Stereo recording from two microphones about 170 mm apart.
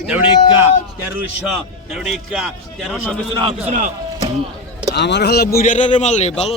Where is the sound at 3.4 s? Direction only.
30° right (ahead or behind).